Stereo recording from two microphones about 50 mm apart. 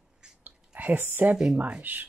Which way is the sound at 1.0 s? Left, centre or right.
Right.